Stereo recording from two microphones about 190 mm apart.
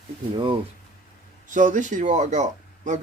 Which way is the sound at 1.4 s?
40° right (ahead or behind).